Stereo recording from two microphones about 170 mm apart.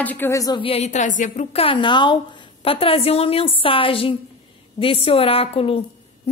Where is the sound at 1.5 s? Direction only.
30° left (ahead or behind).